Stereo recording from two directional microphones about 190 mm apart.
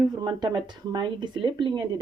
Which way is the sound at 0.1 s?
20° right (ahead or behind).